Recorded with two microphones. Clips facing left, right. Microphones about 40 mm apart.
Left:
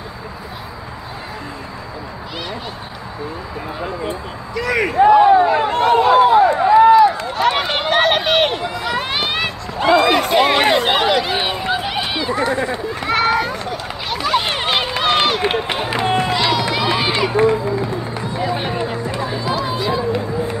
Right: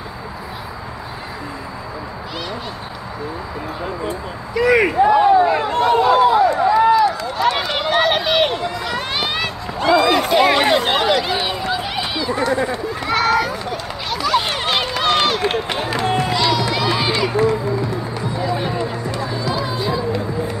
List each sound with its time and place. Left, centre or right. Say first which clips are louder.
4.6 s speech: right 4 dB; centre
5.5 s run: left 1 dB; left
8.6 s run: left 2 dB; centre
9.8 s run: left 1 dB; left
10.3 s run: right 2 dB; centre
10.7 s a sound: left 1 dB; centre
11.3 s run: left 1 dB; left
12.0 s a sound: left 1 dB; left
12.7 s run: left 1 dB; centre
15.5 s run: left 1 dB; left
18.4 s music: left 1 dB; left